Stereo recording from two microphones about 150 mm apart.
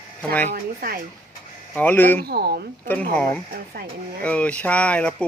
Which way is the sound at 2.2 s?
90° right.